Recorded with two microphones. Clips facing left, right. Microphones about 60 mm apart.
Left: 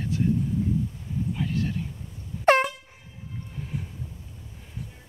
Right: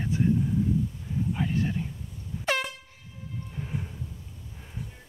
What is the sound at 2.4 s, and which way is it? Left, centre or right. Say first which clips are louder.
Air horn: left 9 dB; left.